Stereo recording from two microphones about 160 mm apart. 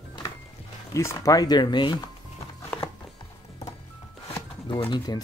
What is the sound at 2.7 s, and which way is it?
Music, 10° left (ahead or behind).